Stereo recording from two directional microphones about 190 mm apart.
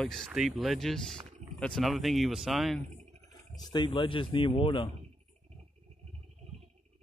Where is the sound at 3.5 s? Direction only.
25° left (ahead or behind).